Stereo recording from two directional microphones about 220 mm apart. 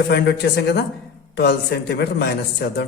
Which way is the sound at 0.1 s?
50° left (ahead or behind).